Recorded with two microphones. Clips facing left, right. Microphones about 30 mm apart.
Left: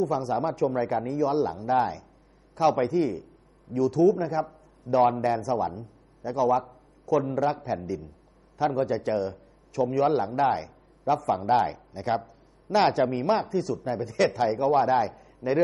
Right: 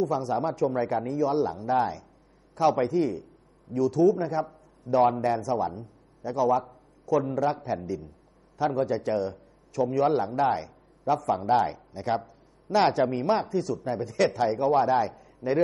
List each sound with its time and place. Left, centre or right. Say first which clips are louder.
0.5 s a man's voice: even; centre